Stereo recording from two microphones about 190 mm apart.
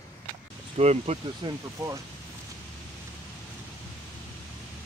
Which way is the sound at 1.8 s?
15° right (ahead or behind).